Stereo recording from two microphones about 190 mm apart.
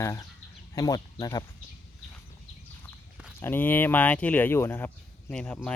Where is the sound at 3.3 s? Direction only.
10° left (ahead or behind).